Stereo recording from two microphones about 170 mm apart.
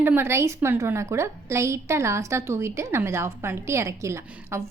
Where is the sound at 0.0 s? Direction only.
15° right (ahead or behind).